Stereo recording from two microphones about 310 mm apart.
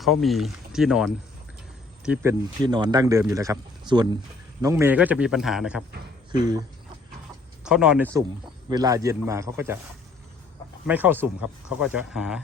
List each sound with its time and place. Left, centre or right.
0.0 s a man's voice: centre
6.3 s a man's voice: centre
10.8 s a man's voice: centre